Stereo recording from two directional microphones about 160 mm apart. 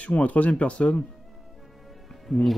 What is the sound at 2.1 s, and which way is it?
Music, centre (ahead or behind).